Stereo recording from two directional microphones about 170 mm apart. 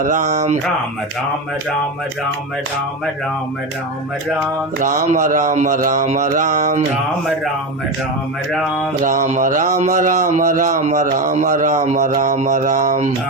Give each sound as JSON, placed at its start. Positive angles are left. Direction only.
{"t": 0.0, "sound": "speech", "side_deg": -45}
{"t": 4.8, "sound": "speech", "side_deg": -50}
{"t": 9.0, "sound": "speech", "side_deg": -45}